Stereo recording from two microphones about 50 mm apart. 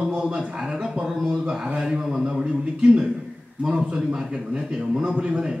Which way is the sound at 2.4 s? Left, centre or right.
Right.